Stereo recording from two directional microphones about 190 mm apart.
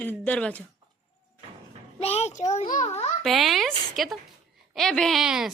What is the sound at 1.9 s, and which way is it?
A child's voice, 35° left (ahead or behind).